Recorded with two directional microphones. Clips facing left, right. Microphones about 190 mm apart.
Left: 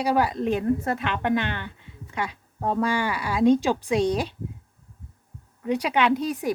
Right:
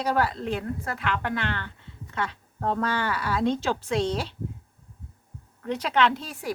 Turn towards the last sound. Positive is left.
turn(degrees=20)  # may be behind; listen again after turning